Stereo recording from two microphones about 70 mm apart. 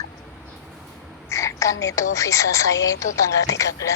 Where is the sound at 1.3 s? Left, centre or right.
Left.